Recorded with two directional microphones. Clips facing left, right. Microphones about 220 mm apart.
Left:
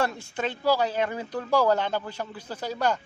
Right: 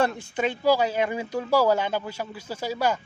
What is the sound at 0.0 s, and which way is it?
Speech, 15° right (ahead or behind).